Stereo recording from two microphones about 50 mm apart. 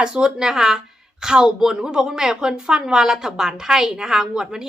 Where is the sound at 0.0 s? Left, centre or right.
Centre.